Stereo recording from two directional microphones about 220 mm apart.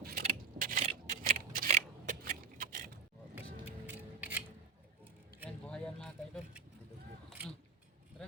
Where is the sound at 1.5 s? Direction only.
40° right (ahead or behind).